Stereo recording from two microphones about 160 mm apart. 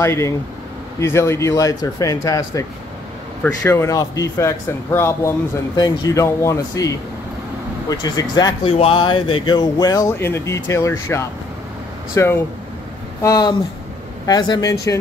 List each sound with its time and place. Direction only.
0.0 s speech: 15° left (ahead or behind)
7.9 s speech: 25° left (ahead or behind)